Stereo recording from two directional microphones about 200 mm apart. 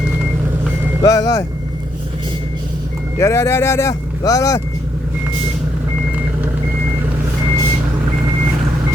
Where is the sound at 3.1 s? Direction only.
15° left (ahead or behind).